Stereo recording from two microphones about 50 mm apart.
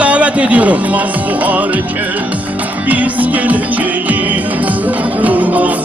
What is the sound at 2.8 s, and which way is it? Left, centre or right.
Music, right.